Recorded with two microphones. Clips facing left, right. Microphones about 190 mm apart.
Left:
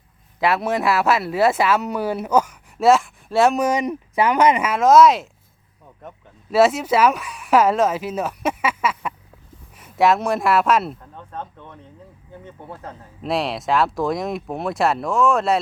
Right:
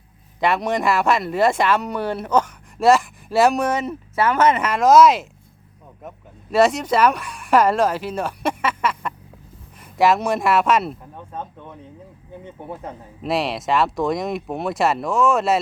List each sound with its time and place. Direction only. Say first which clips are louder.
0.3 s speech: even; 5° left (ahead or behind)
3.7 s speech: left 2 dB; 15° left (ahead or behind)
11.0 s speech: right 1 dB; 10° right (ahead or behind)
13.2 s speech: even; centre (ahead or behind)